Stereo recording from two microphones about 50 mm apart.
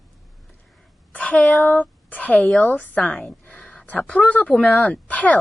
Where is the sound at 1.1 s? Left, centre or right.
Left.